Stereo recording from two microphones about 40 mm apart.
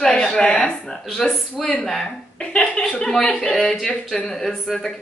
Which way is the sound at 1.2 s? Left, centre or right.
Centre.